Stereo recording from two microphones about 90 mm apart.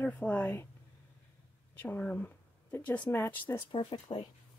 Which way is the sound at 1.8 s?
20° left (ahead or behind).